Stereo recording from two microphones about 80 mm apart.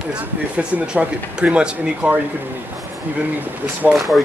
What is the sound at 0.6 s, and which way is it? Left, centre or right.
Speech, centre.